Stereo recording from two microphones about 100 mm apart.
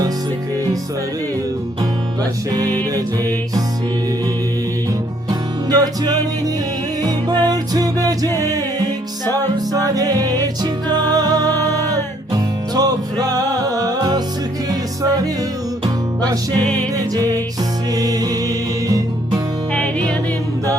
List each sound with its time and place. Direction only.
5.3 s music: 40° right (ahead or behind)
16.2 s music: 40° right (ahead or behind)